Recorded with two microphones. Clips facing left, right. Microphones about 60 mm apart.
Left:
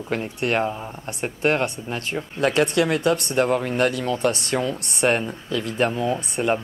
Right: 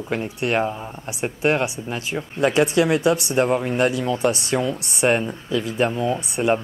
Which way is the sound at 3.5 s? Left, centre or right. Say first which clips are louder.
Right 1 dB; centre.